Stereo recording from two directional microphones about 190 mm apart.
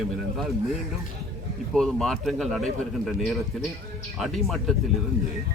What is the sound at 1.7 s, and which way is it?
A man's voice, centre (ahead or behind).